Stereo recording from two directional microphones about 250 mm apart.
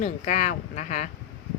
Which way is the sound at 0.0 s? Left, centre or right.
Left.